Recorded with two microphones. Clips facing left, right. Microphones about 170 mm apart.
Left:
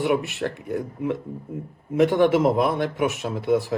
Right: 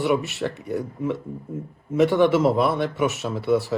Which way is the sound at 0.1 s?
Centre (ahead or behind).